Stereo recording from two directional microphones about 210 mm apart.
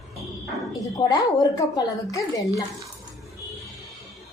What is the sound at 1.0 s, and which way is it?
A woman's voice, 20° left (ahead or behind).